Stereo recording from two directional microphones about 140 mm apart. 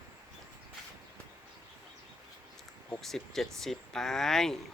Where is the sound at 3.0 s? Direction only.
Centre (ahead or behind).